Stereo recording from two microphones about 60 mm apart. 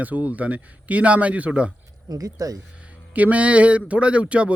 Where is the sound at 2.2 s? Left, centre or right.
Right.